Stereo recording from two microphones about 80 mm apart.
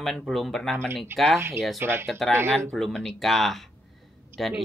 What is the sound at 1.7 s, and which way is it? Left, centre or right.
Speech, right.